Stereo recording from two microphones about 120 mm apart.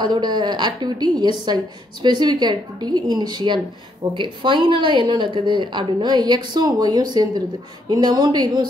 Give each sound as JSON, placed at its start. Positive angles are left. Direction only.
{"t": 0.0, "sound": "a woman's voice", "side_deg": -35}